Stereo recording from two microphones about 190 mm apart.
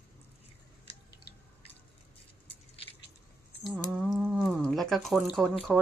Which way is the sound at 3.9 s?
Centre (ahead or behind).